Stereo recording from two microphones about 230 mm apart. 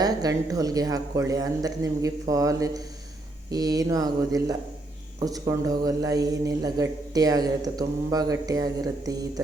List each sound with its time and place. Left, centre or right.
0.0 s speech: centre